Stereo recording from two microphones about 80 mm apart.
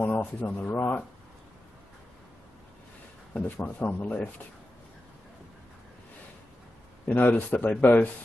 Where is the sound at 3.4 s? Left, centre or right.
Left.